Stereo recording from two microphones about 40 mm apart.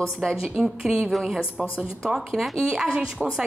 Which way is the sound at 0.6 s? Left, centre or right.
Centre.